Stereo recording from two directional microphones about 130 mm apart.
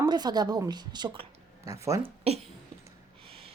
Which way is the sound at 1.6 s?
25° right (ahead or behind).